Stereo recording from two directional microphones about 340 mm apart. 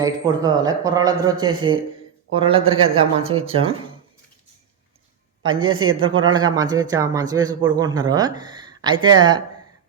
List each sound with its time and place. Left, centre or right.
0.0 s speech: centre
5.4 s a woman's voice: centre
5.6 s a woman's voice: right
6.0 s speech: centre